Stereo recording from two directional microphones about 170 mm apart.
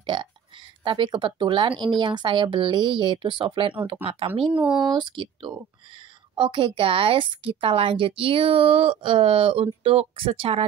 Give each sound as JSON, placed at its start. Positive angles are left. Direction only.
{"t": 0.0, "sound": "speech", "side_deg": -30}
{"t": 4.6, "sound": "speech", "side_deg": -5}
{"t": 4.9, "sound": "speech", "side_deg": -30}